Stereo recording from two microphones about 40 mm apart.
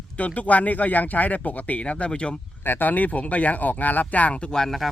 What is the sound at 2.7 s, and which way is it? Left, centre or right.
Speech, left.